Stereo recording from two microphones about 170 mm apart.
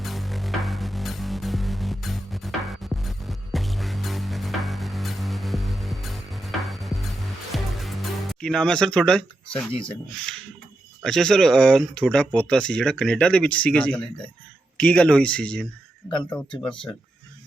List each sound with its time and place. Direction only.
0.0 s music: centre (ahead or behind)
9.7 s speech: 30° left (ahead or behind)
11.0 s speech: centre (ahead or behind)